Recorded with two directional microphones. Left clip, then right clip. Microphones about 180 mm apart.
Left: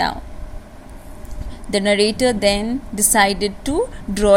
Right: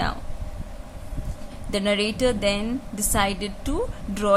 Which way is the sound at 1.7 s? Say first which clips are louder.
Left 7 dB; 10° left (ahead or behind).